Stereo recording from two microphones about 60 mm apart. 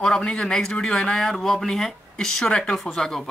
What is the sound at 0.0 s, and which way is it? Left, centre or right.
A man's voice, centre.